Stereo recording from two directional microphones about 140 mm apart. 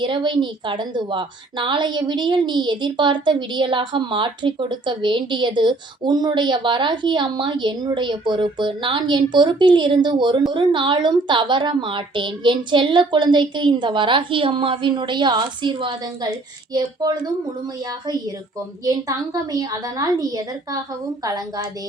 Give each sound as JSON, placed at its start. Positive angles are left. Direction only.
{"t": 0.0, "sound": "a woman's voice", "side_deg": -35}
{"t": 18.9, "sound": "a woman's voice", "side_deg": -25}